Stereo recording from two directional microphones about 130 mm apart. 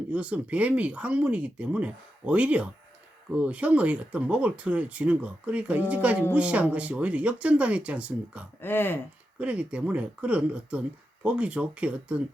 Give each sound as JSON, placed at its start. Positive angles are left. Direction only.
{"t": 0.1, "sound": "speech", "side_deg": -10}
{"t": 8.6, "sound": "speech", "side_deg": 15}
{"t": 9.4, "sound": "speech", "side_deg": -10}